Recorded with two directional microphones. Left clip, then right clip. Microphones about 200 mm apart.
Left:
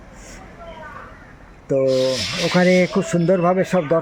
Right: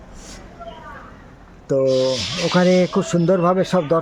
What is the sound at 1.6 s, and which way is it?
Speech, centre (ahead or behind).